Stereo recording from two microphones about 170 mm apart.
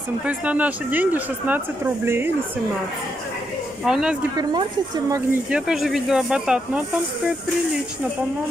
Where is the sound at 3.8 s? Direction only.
5° right (ahead or behind).